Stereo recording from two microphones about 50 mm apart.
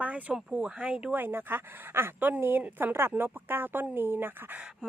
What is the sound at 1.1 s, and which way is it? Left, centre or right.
Speech, right.